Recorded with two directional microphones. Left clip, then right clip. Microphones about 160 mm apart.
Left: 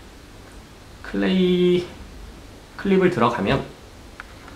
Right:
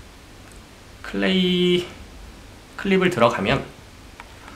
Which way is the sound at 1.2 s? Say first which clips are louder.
Left 1 dB; 20° right (ahead or behind).